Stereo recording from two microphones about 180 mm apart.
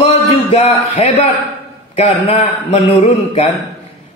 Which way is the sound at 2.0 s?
30° left (ahead or behind).